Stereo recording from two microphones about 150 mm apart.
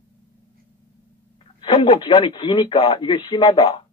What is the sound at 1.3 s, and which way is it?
A man's voice, 35° left (ahead or behind).